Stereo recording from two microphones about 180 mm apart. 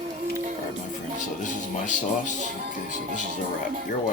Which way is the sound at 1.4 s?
45° left (ahead or behind).